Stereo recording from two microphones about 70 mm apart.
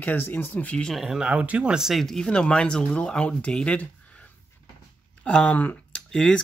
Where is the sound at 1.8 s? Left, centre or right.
Centre.